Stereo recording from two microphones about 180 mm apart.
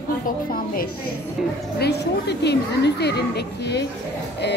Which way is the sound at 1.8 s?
65° left (ahead or behind).